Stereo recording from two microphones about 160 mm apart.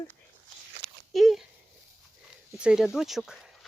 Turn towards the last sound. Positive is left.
turn(degrees=0)  # may be behind; listen again after turning